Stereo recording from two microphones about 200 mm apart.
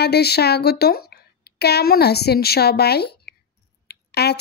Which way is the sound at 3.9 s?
55° left (ahead or behind).